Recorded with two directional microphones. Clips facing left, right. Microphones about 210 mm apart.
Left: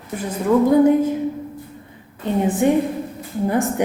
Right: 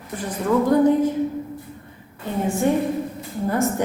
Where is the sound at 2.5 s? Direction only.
20° left (ahead or behind).